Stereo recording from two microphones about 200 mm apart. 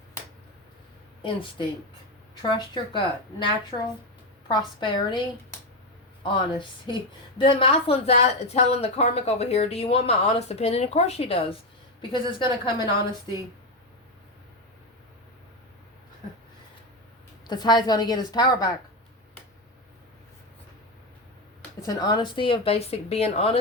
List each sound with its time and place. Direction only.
1.2 s speech: 25° left (ahead or behind)
17.5 s speech: 20° left (ahead or behind)
21.8 s speech: 20° left (ahead or behind)